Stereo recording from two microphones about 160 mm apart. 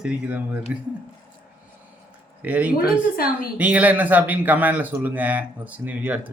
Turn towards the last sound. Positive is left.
turn(degrees=-10)  # may be behind; listen again after turning